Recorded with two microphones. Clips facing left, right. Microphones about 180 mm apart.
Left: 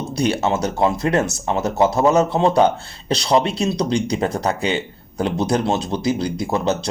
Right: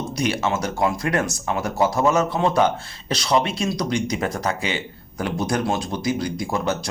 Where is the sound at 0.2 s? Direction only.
30° left (ahead or behind).